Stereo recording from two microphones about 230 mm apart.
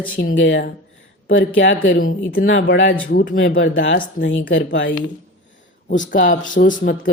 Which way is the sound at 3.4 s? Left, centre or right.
Left.